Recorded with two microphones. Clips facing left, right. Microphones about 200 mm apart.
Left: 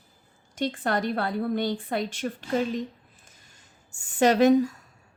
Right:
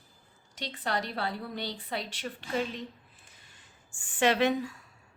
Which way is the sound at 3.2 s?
45° left (ahead or behind).